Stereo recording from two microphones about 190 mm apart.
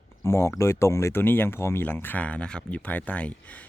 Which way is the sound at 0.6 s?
15° left (ahead or behind).